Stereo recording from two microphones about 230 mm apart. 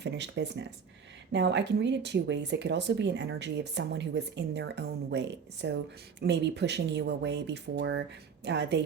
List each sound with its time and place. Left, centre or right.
0.0 s speech: right